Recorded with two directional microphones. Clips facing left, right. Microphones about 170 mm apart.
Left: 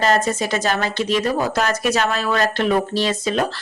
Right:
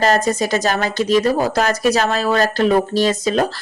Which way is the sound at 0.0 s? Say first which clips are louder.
Right 2 dB; 40° right (ahead or behind).